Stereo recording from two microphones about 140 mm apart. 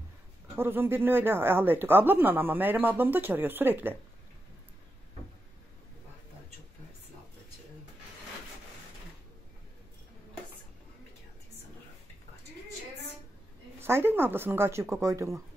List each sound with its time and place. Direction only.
0.6 s speech: 15° right (ahead or behind)
13.7 s speech: 15° right (ahead or behind)